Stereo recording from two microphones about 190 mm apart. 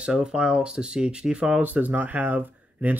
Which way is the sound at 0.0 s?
5° right (ahead or behind).